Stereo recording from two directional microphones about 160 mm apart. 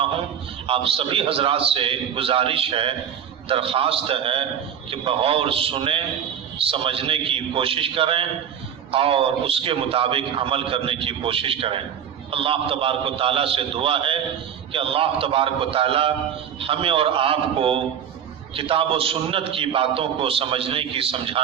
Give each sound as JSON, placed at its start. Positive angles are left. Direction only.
{"t": 0.7, "sound": "a man's voice", "side_deg": -35}